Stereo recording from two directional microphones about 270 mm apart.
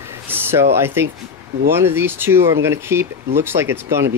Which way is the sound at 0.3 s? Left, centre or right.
Centre.